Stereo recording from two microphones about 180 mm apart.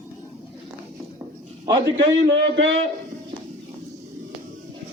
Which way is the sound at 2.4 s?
75° right (ahead or behind).